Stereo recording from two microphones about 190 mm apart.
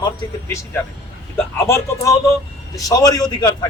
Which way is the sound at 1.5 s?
15° left (ahead or behind).